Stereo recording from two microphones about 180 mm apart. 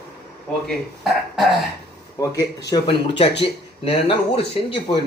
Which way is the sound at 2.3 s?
20° left (ahead or behind).